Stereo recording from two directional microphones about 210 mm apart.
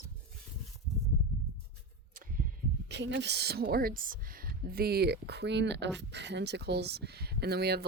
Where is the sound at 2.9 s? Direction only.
55° right (ahead or behind).